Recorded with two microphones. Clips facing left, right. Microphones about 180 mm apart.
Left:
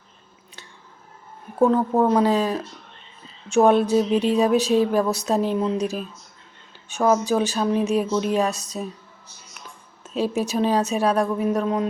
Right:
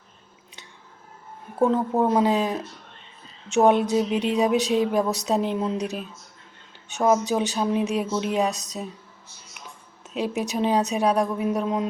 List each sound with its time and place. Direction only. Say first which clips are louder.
1.6 s a woman's voice: left 3 dB; 20° right (ahead or behind)